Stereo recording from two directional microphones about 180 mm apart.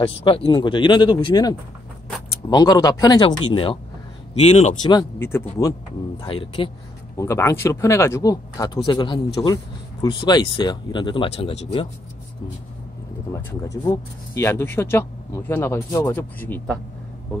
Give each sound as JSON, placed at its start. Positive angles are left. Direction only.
{"t": 0.2, "sound": "speech", "side_deg": 30}
{"t": 4.8, "sound": "speech", "side_deg": 20}
{"t": 6.2, "sound": "speech", "side_deg": 30}
{"t": 7.2, "sound": "speech", "side_deg": 15}
{"t": 13.8, "sound": "speech", "side_deg": 15}